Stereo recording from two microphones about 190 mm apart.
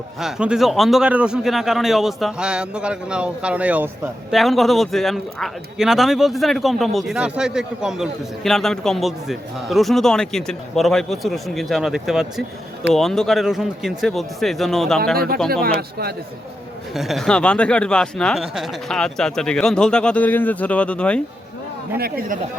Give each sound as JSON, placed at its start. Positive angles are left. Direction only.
{"t": 0.2, "sound": "a man's voice", "side_deg": -5}
{"t": 15.6, "sound": "speech", "side_deg": -55}
{"t": 16.9, "sound": "a man's voice", "side_deg": 0}
{"t": 21.9, "sound": "a man's voice", "side_deg": -55}